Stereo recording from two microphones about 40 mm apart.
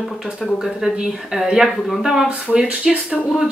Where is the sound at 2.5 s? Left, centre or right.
Right.